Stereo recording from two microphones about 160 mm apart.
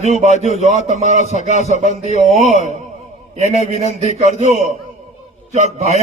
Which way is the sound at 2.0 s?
45° left (ahead or behind).